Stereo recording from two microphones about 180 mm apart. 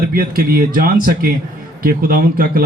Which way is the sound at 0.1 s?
55° right (ahead or behind).